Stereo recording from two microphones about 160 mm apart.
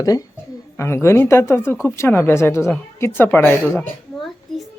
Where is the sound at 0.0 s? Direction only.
20° left (ahead or behind).